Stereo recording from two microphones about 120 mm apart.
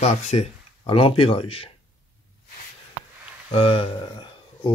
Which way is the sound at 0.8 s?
50° left (ahead or behind).